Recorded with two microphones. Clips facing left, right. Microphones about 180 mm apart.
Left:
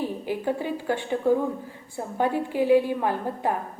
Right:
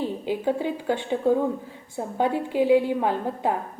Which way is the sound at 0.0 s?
15° right (ahead or behind).